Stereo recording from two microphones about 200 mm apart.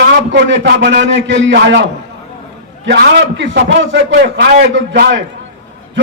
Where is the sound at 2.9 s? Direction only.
65° right (ahead or behind).